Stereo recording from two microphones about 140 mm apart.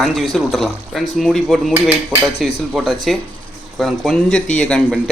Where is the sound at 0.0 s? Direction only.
Centre (ahead or behind).